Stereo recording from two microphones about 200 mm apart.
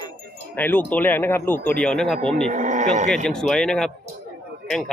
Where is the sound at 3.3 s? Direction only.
5° left (ahead or behind).